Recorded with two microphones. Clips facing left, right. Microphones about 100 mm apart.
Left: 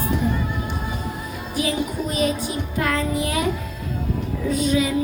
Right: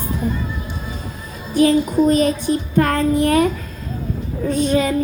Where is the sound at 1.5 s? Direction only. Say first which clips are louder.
Right 10 dB; 45° right (ahead or behind).